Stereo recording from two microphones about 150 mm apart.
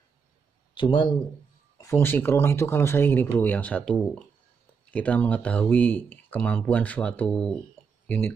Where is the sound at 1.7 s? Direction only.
15° left (ahead or behind).